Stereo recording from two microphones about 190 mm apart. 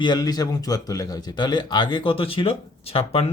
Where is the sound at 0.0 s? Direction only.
20° left (ahead or behind).